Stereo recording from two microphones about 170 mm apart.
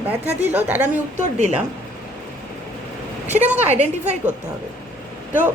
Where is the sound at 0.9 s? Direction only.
40° right (ahead or behind).